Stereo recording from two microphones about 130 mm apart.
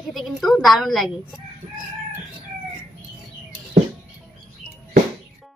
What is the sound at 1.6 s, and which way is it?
Chicken, 50° right (ahead or behind).